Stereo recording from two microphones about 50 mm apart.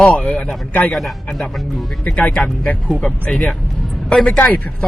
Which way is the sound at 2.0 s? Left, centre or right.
Left.